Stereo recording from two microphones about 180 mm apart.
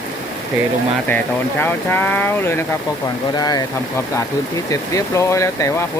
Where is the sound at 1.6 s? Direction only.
10° left (ahead or behind).